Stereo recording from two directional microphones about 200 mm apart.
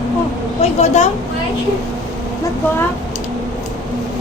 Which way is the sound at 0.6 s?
35° left (ahead or behind).